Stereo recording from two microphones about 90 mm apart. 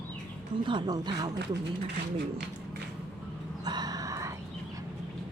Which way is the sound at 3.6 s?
50° right (ahead or behind).